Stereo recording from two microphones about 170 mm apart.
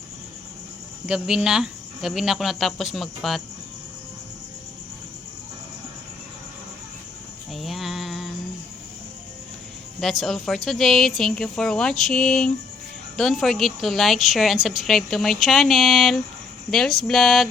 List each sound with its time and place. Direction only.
1.0 s a woman's voice: 5° right (ahead or behind)
7.5 s music: centre (ahead or behind)
10.0 s a woman's voice: centre (ahead or behind)